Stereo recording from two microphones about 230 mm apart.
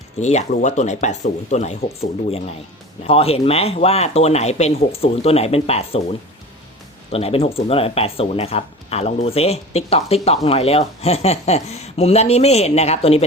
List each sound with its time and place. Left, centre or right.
0.2 s speech: left
7.1 s speech: left